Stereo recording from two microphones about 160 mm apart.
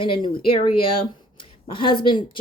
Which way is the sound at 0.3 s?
35° left (ahead or behind).